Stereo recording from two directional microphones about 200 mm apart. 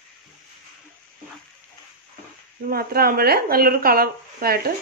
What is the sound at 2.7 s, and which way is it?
Speech, 50° right (ahead or behind).